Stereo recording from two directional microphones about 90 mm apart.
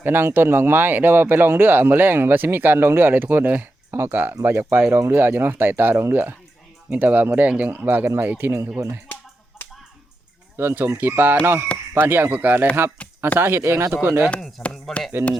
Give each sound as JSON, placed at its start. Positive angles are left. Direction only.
{"t": 0.0, "sound": "speech", "side_deg": -25}
{"t": 9.6, "sound": "finger snapping", "side_deg": 20}
{"t": 10.6, "sound": "speech", "side_deg": -25}
{"t": 13.0, "sound": "a sound", "side_deg": 15}
{"t": 13.4, "sound": "speech", "side_deg": -25}
{"t": 14.3, "sound": "speech", "side_deg": 10}